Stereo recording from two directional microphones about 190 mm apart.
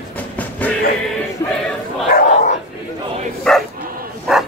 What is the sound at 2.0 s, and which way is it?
Dog, 45° left (ahead or behind).